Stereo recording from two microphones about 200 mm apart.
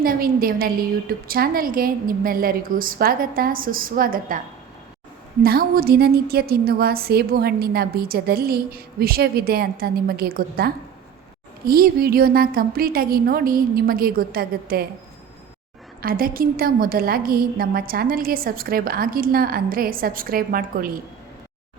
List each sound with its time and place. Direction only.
0.0 s a woman's voice: 45° right (ahead or behind)
5.4 s a woman's voice: 50° right (ahead or behind)
16.0 s a woman's voice: 45° right (ahead or behind)